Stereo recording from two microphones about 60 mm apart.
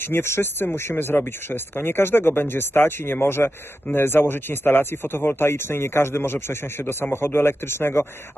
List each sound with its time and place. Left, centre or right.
0.0 s speech: left